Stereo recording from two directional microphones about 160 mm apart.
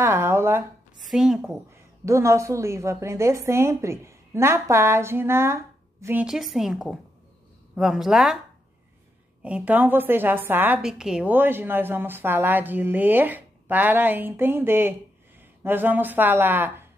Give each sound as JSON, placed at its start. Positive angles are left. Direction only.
{"t": 0.0, "sound": "speech", "side_deg": -15}
{"t": 1.0, "sound": "a woman's voice", "side_deg": -5}
{"t": 2.0, "sound": "a woman's voice", "side_deg": -20}
{"t": 6.2, "sound": "a woman's voice", "side_deg": 0}
{"t": 9.4, "sound": "a woman's voice", "side_deg": -10}